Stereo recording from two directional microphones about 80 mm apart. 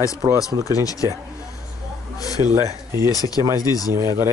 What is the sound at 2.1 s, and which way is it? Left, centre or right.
Speech, left.